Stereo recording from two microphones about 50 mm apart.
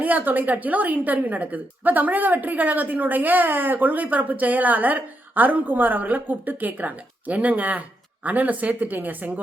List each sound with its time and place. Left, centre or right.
0.0 s a woman's voice: right